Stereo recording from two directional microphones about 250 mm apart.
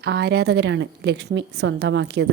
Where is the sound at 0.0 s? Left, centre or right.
Right.